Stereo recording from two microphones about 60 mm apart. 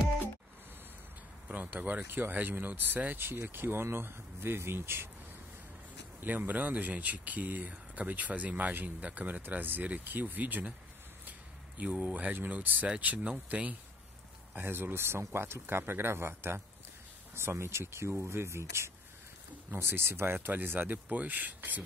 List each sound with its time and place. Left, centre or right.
1.5 s speech: right
6.2 s speech: right
14.6 s speech: right
20.3 s speech: right